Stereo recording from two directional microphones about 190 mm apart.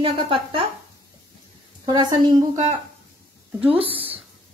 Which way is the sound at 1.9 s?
20° right (ahead or behind).